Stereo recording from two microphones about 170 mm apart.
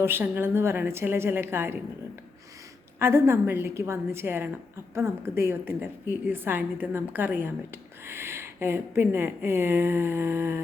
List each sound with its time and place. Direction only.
0.0 s a woman's voice: 10° right (ahead or behind)
3.0 s a woman's voice: 15° right (ahead or behind)